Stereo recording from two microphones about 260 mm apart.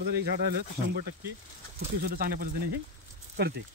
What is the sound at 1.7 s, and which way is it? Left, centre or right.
Speech, right.